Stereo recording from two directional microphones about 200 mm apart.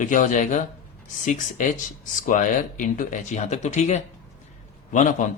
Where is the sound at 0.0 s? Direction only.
40° left (ahead or behind).